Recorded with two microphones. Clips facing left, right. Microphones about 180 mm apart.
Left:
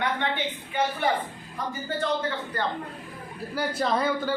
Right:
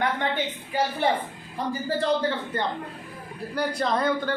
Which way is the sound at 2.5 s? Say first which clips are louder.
Left 2 dB; 25° right (ahead or behind).